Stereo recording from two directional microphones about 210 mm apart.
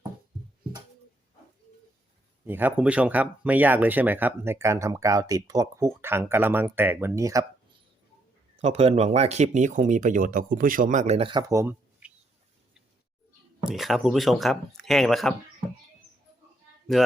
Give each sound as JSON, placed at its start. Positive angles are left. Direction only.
{"t": 2.4, "sound": "speech", "side_deg": -10}
{"t": 8.6, "sound": "speech", "side_deg": -30}
{"t": 13.7, "sound": "speech", "side_deg": 0}